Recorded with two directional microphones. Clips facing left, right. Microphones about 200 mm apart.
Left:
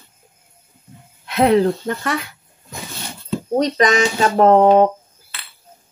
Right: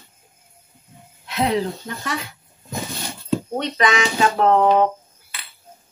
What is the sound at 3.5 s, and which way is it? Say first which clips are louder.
Speech: left 8 dB; 40° left (ahead or behind).